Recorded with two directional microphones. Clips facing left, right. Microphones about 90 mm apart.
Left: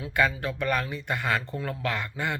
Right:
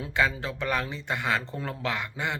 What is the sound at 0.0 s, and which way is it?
Speech, 20° right (ahead or behind).